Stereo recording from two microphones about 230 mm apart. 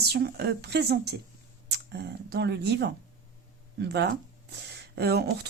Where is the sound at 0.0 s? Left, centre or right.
Right.